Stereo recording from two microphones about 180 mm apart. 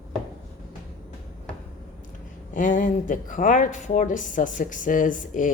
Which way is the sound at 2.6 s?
45° left (ahead or behind).